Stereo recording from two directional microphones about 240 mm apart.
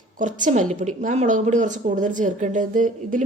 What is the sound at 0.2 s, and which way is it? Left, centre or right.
A woman's voice, right.